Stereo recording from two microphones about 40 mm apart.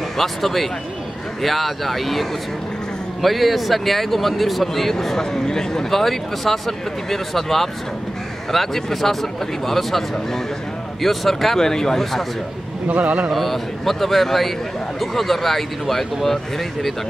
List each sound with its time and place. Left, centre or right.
0.2 s a man's voice: centre
12.8 s a man's voice: right
13.3 s speech: centre